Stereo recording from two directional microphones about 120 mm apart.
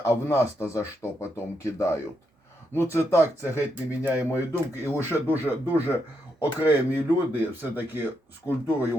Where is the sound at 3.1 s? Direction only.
25° left (ahead or behind).